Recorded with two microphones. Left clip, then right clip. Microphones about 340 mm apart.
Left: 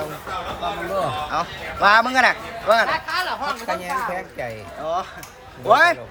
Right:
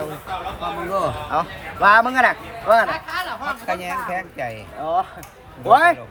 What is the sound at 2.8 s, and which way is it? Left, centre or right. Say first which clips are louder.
Speech: left 2 dB; left.